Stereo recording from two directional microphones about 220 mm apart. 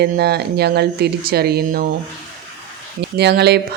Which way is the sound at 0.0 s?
45° right (ahead or behind).